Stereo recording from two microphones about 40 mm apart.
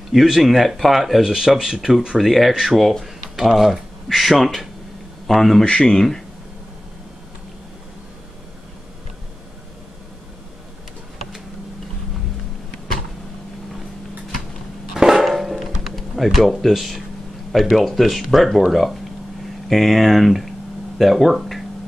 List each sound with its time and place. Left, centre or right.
0.1 s speech: centre
5.7 s speech: left
5.9 s speech: centre
15.0 s music: centre
15.2 s music: centre
15.8 s speech: centre